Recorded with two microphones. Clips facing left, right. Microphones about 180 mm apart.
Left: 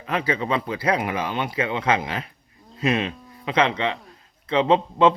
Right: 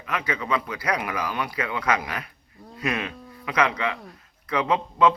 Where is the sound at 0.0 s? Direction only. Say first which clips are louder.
Left 4 dB; 30° left (ahead or behind).